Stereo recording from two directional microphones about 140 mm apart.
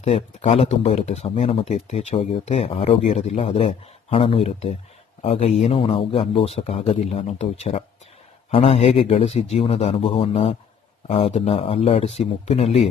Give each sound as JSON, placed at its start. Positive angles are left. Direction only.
{"t": 0.0, "sound": "speech", "side_deg": 45}